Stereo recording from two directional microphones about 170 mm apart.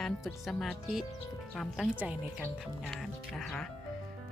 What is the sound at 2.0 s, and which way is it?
Speech, 10° right (ahead or behind).